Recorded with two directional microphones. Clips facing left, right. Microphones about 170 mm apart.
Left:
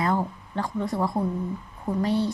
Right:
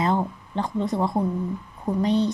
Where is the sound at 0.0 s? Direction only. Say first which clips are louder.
Right 2 dB; 20° right (ahead or behind).